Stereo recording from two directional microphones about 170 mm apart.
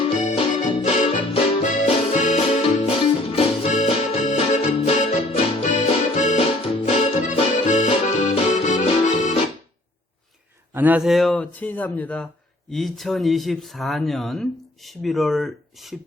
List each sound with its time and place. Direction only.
0.0 s music: 40° left (ahead or behind)
10.8 s a man's voice: 10° right (ahead or behind)